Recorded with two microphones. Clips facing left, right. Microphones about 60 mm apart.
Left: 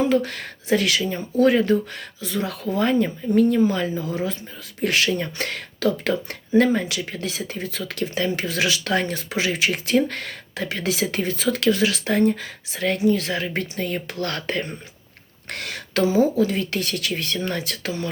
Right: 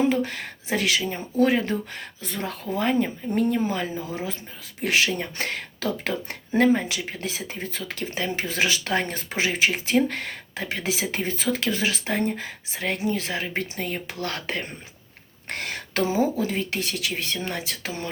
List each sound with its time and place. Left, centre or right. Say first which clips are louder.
0.0 s speech: left 2 dB; right
2.2 s speech: left 5 dB; right
2.7 s speech: left 3 dB; centre
9.6 s speech: left 1 dB; centre
15.4 s speech: even; right